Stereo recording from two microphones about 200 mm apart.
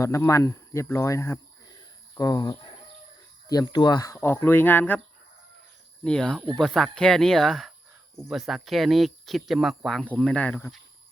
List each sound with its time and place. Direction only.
0.0 s speech: 15° left (ahead or behind)
6.0 s speech: 5° left (ahead or behind)